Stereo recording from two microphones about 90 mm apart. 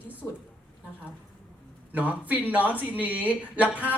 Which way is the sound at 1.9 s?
15° right (ahead or behind).